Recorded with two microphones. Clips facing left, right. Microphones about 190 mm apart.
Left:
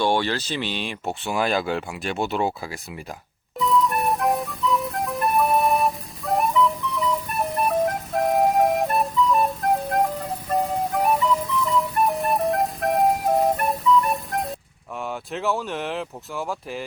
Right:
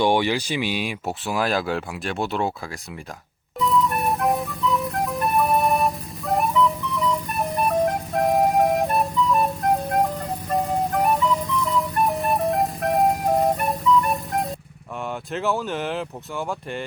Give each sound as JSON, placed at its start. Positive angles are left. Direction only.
{"t": 0.0, "sound": "speech", "side_deg": -15}
{"t": 3.6, "sound": "music", "side_deg": 0}
{"t": 7.5, "sound": "flute", "side_deg": 0}
{"t": 10.5, "sound": "music", "side_deg": 0}
{"t": 15.0, "sound": "speech", "side_deg": 0}